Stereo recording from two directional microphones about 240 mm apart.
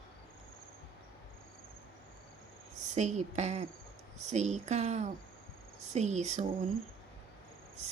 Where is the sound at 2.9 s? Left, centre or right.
Right.